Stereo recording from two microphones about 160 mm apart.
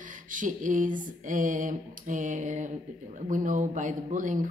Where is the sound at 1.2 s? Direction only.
55° right (ahead or behind).